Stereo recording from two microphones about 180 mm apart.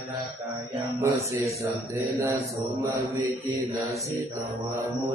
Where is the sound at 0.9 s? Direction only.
15° right (ahead or behind).